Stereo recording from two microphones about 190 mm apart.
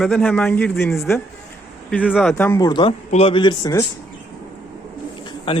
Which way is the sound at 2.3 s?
10° left (ahead or behind).